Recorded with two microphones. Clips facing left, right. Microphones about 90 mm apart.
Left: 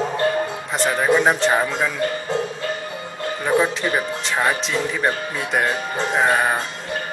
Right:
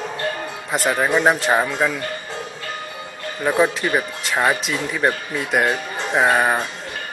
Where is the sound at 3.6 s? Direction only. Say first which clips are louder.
Right 3 dB; 5° right (ahead or behind).